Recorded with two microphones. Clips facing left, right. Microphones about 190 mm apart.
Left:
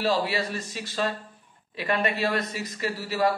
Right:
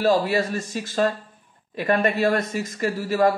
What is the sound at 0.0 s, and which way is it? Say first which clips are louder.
Speech: right 6 dB; 45° right (ahead or behind).